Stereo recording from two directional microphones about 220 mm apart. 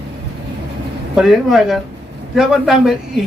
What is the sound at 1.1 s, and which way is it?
A man's voice, centre (ahead or behind).